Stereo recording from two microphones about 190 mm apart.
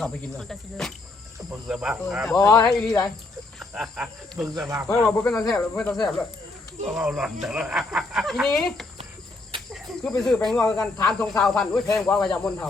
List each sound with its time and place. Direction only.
0.0 s speech: 5° left (ahead or behind)
2.4 s speech: 20° left (ahead or behind)
2.6 s speech: centre (ahead or behind)